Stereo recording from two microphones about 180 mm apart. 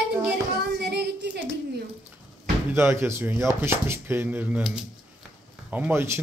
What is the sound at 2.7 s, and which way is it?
A man's voice, 15° right (ahead or behind).